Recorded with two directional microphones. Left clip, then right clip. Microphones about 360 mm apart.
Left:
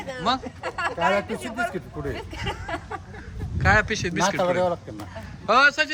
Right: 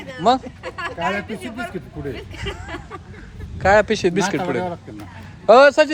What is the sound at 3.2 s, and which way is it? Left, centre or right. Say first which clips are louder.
A man's voice: right 5 dB; centre.